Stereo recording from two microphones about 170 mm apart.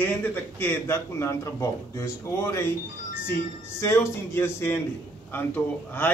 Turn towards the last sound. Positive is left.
turn(degrees=10)  # may be behind; listen again after turning